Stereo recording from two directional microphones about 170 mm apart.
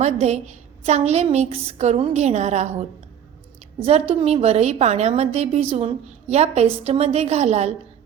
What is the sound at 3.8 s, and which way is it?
A woman's voice, 35° right (ahead or behind).